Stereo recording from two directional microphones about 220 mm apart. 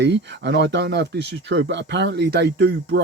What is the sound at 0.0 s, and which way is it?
Speech, 50° right (ahead or behind).